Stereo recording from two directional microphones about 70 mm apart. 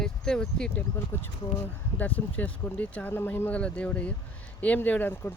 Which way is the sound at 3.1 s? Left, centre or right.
Left.